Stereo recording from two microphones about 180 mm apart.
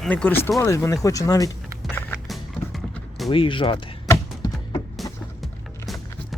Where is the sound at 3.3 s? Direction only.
30° left (ahead or behind).